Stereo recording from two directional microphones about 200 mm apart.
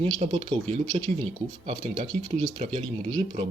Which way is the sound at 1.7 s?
25° right (ahead or behind).